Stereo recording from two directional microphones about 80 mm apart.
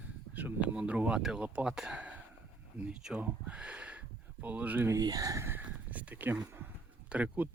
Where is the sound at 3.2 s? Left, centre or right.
Centre.